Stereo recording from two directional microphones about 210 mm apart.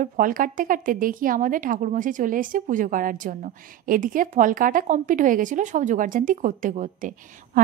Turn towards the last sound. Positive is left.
turn(degrees=-40)  # may be behind; listen again after turning